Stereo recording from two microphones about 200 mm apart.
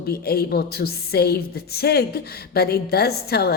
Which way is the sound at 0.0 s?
50° left (ahead or behind).